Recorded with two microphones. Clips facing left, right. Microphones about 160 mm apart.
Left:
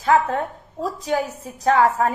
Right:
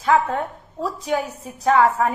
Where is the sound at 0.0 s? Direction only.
40° left (ahead or behind).